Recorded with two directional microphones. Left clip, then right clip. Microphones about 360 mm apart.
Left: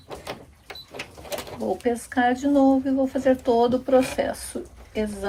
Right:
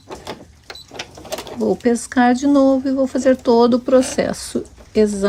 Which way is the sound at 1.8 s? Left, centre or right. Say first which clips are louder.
Right 5 dB; centre.